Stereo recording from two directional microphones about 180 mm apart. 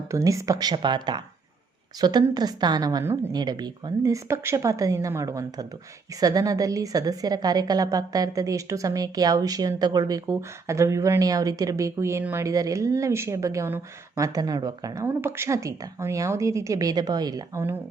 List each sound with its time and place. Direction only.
0.1 s a woman's voice: 15° right (ahead or behind)